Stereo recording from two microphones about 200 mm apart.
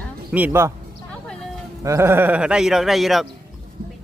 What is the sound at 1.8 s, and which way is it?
Speech, 15° right (ahead or behind).